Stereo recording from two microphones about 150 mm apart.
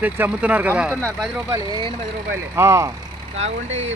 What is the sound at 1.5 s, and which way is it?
Speech, 30° right (ahead or behind).